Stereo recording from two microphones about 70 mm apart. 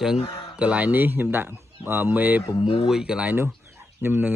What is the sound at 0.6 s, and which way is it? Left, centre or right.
Speech, centre.